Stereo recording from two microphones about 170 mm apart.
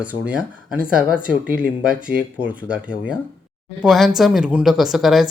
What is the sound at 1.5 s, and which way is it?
Speech, 5° right (ahead or behind).